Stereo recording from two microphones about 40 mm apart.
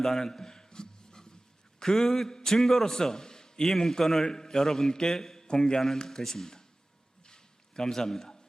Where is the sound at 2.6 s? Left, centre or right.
Centre.